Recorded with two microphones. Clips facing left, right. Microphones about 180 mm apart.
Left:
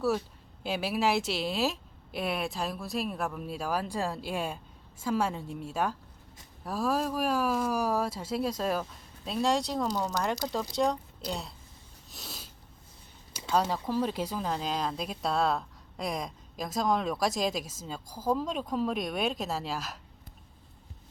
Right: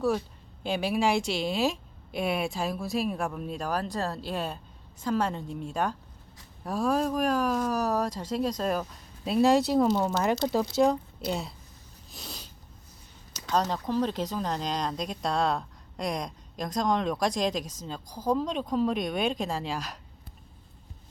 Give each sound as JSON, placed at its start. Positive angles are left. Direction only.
{"t": 0.6, "sound": "speech", "side_deg": 5}
{"t": 9.9, "sound": "speech", "side_deg": -25}
{"t": 10.7, "sound": "speech", "side_deg": -5}
{"t": 12.1, "sound": "sneeze", "side_deg": 0}
{"t": 13.5, "sound": "speech", "side_deg": 10}